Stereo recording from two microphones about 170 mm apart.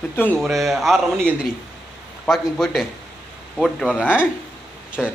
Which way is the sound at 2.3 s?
Centre (ahead or behind).